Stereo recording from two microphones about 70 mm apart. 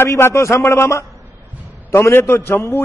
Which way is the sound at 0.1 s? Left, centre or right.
Left.